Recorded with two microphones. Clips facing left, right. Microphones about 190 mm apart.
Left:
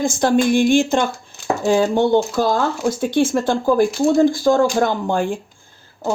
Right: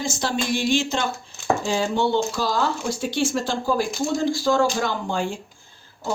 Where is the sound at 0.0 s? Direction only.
55° left (ahead or behind).